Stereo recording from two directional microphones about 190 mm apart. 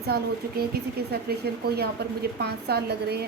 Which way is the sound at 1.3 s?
55° right (ahead or behind).